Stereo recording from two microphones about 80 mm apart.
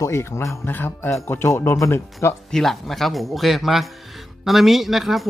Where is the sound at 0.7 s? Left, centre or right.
Left.